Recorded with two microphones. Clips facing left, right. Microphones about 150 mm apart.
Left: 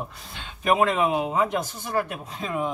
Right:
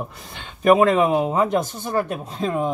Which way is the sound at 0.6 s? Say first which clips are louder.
Right 6 dB; 45° right (ahead or behind).